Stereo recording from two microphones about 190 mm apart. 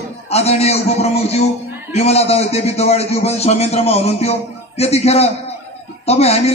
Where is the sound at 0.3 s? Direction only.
35° left (ahead or behind).